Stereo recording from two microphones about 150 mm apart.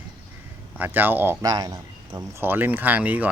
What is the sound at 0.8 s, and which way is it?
Speech, 10° right (ahead or behind).